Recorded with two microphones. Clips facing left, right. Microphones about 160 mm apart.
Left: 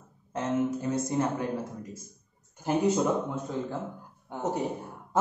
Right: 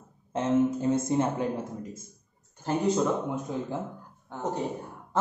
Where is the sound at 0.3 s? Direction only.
25° right (ahead or behind).